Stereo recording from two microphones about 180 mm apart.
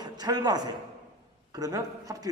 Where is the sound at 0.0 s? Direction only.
20° right (ahead or behind).